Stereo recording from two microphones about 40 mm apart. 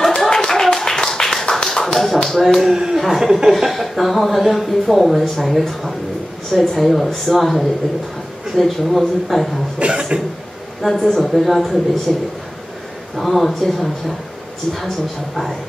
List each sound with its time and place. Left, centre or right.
0.0 s clapping: centre
1.5 s tap: centre
2.2 s speech: centre
2.7 s speech: centre
3.0 s speech: centre
9.8 s speech: right
10.9 s a woman's voice: centre